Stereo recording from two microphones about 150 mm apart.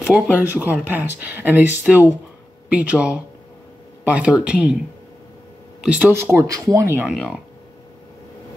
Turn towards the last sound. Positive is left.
turn(degrees=-5)  # may be behind; listen again after turning